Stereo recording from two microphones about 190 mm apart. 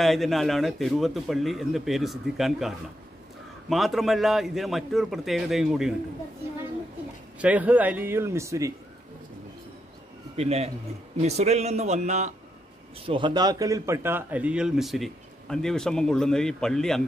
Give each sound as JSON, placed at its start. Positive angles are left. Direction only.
{"t": 0.0, "sound": "a man's voice", "side_deg": 0}
{"t": 7.3, "sound": "a man's voice", "side_deg": -5}
{"t": 10.3, "sound": "a man's voice", "side_deg": -35}
{"t": 13.0, "sound": "a man's voice", "side_deg": -25}